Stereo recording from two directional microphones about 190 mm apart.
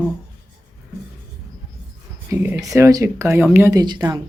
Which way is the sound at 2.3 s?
10° right (ahead or behind).